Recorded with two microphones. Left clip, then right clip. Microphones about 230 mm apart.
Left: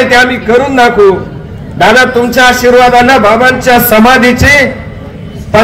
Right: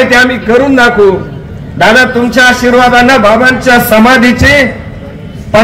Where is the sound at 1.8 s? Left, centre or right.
Left.